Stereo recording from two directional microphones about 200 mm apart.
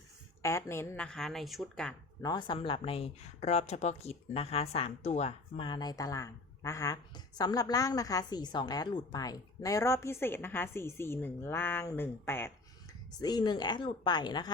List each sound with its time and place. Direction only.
0.4 s a woman's voice: 15° left (ahead or behind)
2.2 s speech: 25° left (ahead or behind)